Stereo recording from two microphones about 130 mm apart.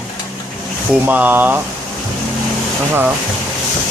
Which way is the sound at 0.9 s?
10° right (ahead or behind).